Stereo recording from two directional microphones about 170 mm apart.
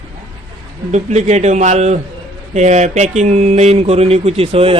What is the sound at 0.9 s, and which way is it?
A man's voice, 45° right (ahead or behind).